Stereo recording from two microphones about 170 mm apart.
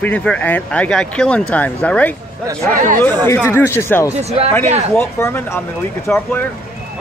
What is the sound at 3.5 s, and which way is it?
Speech, 15° left (ahead or behind).